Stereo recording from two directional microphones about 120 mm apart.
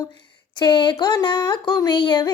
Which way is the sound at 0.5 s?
40° left (ahead or behind).